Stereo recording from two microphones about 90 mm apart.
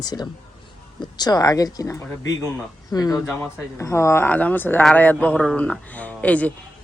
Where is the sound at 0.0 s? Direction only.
50° left (ahead or behind).